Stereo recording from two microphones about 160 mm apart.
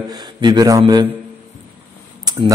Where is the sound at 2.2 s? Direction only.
25° right (ahead or behind).